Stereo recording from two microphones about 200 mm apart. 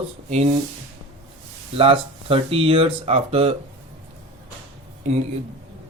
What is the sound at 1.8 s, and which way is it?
Speech, 25° right (ahead or behind).